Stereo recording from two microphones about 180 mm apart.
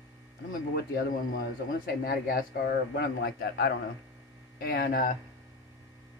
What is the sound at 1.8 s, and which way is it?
Speech, 60° left (ahead or behind).